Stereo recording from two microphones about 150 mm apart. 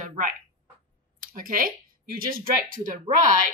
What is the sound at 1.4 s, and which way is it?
Speech, 70° right (ahead or behind).